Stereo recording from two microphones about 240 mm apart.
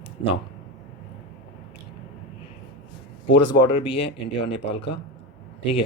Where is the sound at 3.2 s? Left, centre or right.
Left.